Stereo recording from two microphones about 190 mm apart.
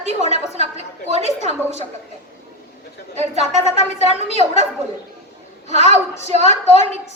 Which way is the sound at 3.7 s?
35° left (ahead or behind).